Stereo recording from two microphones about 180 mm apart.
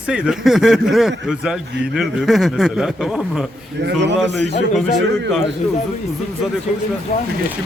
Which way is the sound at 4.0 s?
75° right (ahead or behind).